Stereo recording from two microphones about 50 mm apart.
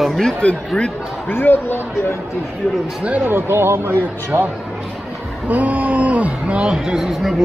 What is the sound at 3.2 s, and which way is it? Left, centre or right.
Speech, right.